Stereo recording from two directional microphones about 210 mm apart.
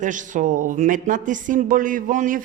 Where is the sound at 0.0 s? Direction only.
35° right (ahead or behind).